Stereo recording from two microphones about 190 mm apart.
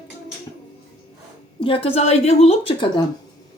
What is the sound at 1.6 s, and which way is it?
A woman's voice, 25° left (ahead or behind).